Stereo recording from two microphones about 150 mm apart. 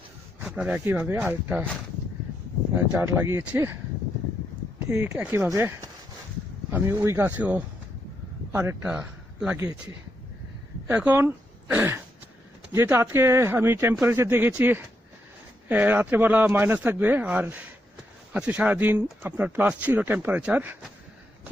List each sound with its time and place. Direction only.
0.4 s speech: 10° right (ahead or behind)
2.7 s speech: 10° right (ahead or behind)
4.9 s speech: 15° right (ahead or behind)
10.8 s speech: 10° right (ahead or behind)